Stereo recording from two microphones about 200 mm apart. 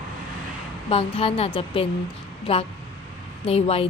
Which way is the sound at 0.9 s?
30° left (ahead or behind).